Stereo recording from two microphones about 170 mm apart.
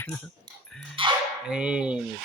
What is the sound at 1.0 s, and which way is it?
Speech, 30° right (ahead or behind).